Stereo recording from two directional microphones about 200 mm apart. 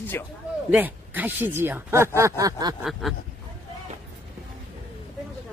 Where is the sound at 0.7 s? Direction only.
10° right (ahead or behind).